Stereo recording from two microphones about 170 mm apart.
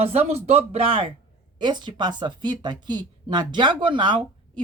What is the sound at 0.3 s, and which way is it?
Speech, 40° right (ahead or behind).